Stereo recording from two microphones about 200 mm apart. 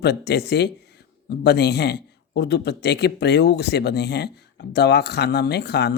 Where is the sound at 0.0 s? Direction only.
55° left (ahead or behind).